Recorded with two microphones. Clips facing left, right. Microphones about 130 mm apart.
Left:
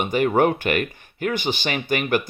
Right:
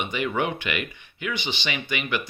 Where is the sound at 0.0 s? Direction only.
45° left (ahead or behind).